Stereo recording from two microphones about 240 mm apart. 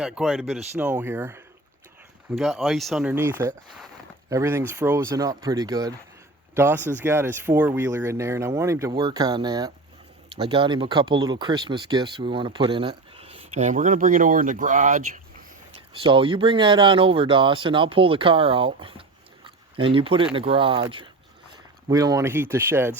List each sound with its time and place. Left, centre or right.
0.0 s speech: centre; by 15.8 s right
16.0 s speech: right